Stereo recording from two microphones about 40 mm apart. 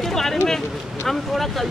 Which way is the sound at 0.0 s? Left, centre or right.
Centre.